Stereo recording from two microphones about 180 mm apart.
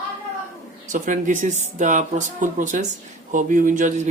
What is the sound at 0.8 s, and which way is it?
Speech, 45° right (ahead or behind).